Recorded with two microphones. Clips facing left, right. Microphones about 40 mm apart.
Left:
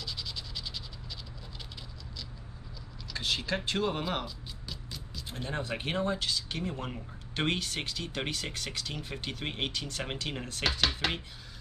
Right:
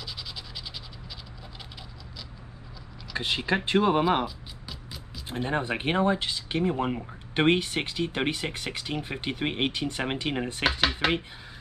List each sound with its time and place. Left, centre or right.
0.0 s scratch: centre
3.1 s speech: right
4.6 s music: centre
5.2 s speech: right